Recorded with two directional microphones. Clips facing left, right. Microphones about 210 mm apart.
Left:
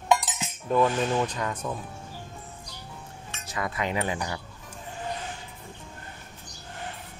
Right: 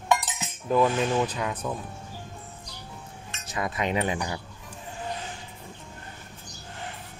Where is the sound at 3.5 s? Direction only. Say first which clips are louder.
Right 2 dB; 20° right (ahead or behind).